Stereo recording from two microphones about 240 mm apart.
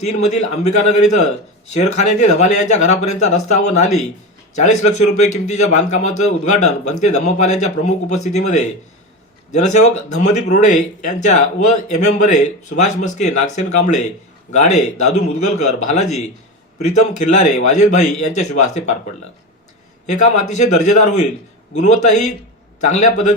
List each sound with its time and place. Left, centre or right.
0.0 s speech: left
5.1 s a man's voice: left
20.1 s a man's voice: left